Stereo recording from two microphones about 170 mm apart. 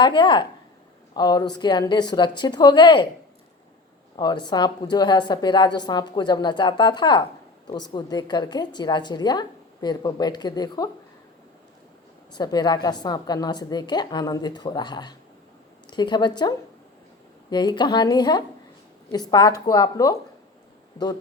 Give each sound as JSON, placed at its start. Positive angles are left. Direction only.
{"t": 0.0, "sound": "a woman's voice", "side_deg": 25}
{"t": 4.2, "sound": "a woman's voice", "side_deg": 25}
{"t": 12.3, "sound": "a woman's voice", "side_deg": 25}